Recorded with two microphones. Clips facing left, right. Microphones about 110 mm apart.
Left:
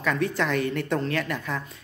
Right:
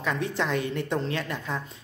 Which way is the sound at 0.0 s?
20° right (ahead or behind).